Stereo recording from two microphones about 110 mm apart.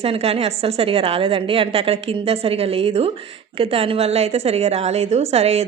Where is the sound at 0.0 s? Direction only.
65° right (ahead or behind).